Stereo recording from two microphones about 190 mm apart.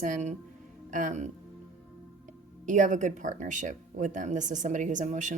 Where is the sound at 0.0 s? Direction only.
40° right (ahead or behind).